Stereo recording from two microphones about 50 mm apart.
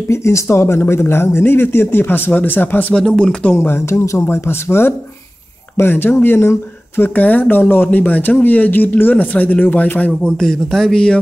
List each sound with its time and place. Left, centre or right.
0.1 s speech: left
2.9 s speech: centre
3.5 s speech: left
10.2 s speech: centre